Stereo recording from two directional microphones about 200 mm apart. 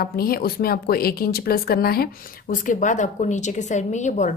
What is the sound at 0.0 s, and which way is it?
A woman's voice, 50° left (ahead or behind).